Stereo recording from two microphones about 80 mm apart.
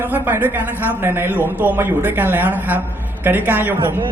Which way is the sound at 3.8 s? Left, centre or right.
Right.